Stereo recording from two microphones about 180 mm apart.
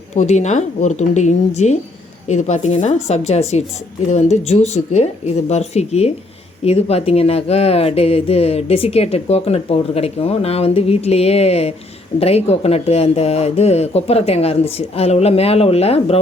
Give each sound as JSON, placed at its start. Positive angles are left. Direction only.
{"t": 0.1, "sound": "speech", "side_deg": 40}